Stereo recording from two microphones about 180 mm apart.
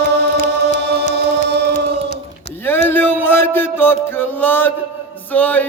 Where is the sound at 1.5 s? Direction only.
70° right (ahead or behind).